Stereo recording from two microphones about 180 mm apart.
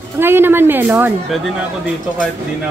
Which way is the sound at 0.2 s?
10° right (ahead or behind).